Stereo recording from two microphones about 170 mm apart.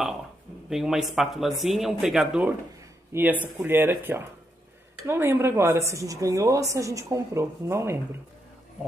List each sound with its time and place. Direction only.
0.7 s a man's voice: 5° right (ahead or behind)